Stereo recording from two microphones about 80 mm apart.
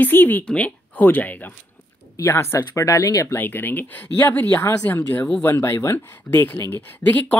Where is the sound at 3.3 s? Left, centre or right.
Left.